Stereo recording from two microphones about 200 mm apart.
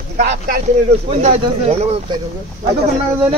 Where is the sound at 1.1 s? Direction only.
30° right (ahead or behind).